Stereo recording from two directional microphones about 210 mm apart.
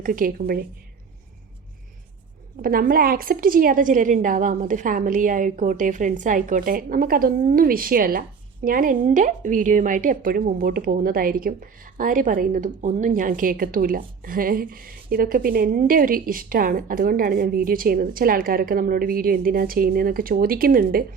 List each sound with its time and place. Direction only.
0.0 s a woman's voice: 40° right (ahead or behind)
2.6 s a woman's voice: 45° right (ahead or behind)